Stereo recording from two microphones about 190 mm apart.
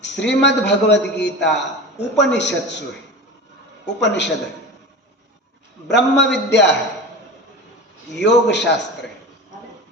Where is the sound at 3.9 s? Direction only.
65° left (ahead or behind).